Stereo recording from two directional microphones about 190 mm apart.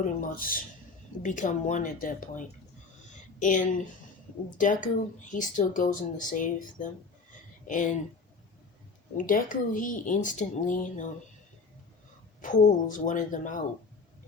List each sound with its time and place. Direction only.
0.3 s speech: 50° left (ahead or behind)
3.1 s a sound: 40° left (ahead or behind)
4.5 s speech: 45° left (ahead or behind)
9.1 s speech: 45° left (ahead or behind)
12.4 s speech: 40° left (ahead or behind)